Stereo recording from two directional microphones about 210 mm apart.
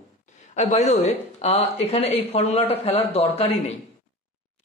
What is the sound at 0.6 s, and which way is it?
Speech, 35° left (ahead or behind).